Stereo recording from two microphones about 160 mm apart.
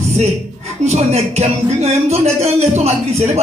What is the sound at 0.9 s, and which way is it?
Speech, 40° right (ahead or behind).